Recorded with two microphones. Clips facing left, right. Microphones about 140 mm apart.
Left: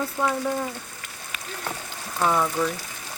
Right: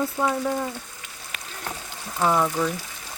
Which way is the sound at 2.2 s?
5° right (ahead or behind).